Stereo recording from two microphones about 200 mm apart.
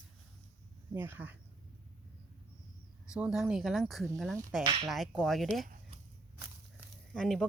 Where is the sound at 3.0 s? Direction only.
5° right (ahead or behind).